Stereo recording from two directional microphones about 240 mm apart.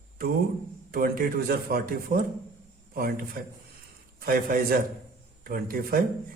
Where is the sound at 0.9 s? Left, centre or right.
Right.